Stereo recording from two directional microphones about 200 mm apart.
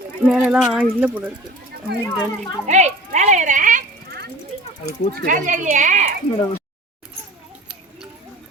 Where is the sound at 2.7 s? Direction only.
35° right (ahead or behind).